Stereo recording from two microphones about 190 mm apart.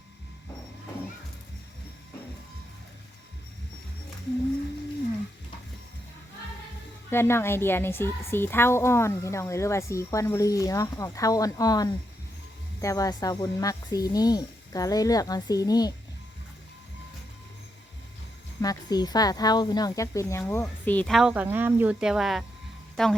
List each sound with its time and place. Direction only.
7.1 s a woman's voice: 15° left (ahead or behind)
18.6 s speech: 20° left (ahead or behind); by 23.1 s centre (ahead or behind)